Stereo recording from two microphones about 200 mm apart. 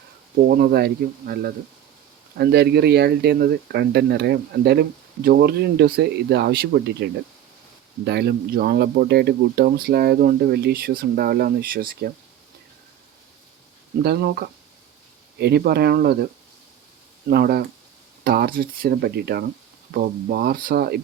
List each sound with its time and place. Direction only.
0.3 s speech: 45° right (ahead or behind)
14.0 s speech: 55° right (ahead or behind)
17.2 s speech: 50° right (ahead or behind)